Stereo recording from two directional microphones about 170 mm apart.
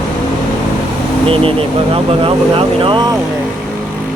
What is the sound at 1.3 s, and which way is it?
Speech, 35° right (ahead or behind).